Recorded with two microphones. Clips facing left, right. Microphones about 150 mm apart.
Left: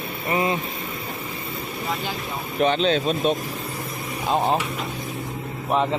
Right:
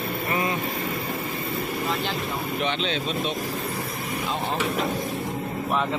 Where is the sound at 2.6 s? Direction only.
40° left (ahead or behind).